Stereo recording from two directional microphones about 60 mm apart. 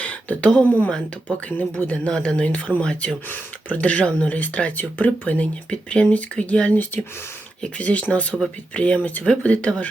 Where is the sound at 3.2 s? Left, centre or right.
Left.